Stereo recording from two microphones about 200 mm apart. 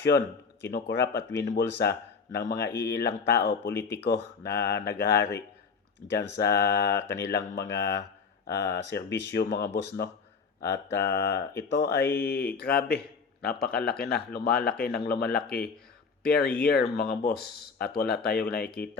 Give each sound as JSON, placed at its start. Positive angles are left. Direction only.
{"t": 0.6, "sound": "speech", "side_deg": 55}